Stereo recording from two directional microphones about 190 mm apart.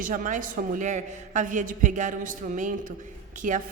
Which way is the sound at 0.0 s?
45° right (ahead or behind).